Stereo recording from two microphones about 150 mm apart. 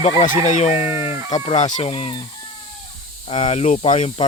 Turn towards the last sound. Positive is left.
turn(degrees=45)  # may be behind; listen again after turning